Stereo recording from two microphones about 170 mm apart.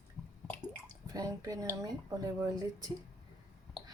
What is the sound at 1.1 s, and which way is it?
Speech, 20° right (ahead or behind).